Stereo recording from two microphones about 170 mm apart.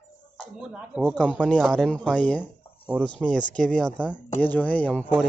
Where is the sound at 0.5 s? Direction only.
5° right (ahead or behind).